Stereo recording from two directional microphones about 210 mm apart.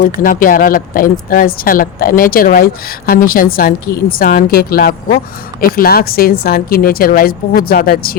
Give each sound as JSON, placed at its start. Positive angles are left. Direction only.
{"t": 0.0, "sound": "speech", "side_deg": 40}